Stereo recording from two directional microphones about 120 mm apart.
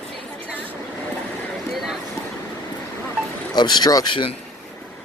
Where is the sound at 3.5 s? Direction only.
35° left (ahead or behind).